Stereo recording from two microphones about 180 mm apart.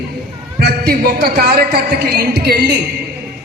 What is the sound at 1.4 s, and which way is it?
A man's voice, 60° right (ahead or behind).